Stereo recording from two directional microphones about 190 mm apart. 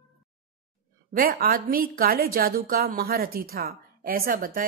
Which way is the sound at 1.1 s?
50° right (ahead or behind).